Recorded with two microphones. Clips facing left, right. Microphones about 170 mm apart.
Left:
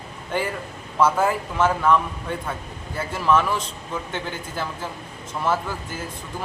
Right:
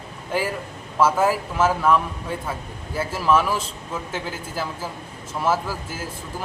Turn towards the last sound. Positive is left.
turn(degrees=-5)  # may be behind; listen again after turning